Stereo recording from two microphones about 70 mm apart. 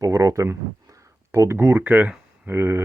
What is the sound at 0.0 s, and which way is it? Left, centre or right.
Speech, right.